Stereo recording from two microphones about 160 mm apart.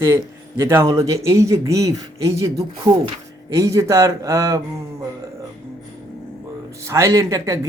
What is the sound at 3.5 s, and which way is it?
Speech, 20° right (ahead or behind).